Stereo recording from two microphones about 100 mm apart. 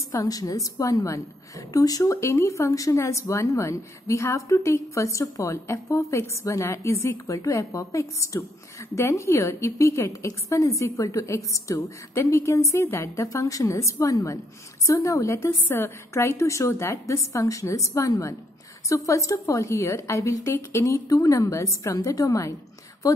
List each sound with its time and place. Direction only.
0.1 s a woman's voice: 35° left (ahead or behind)